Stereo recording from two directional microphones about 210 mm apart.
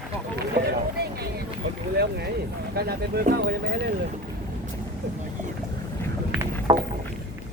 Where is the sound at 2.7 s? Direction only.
50° right (ahead or behind).